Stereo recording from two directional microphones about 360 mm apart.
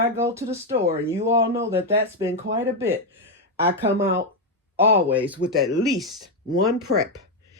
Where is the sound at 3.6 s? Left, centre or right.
Right.